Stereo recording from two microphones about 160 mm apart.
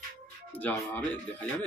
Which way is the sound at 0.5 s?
10° left (ahead or behind).